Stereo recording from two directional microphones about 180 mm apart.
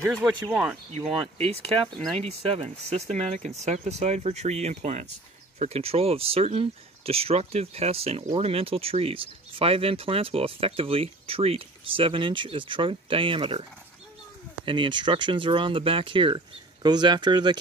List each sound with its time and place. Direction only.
0.0 s speech: centre (ahead or behind)
0.9 s speech: 35° right (ahead or behind)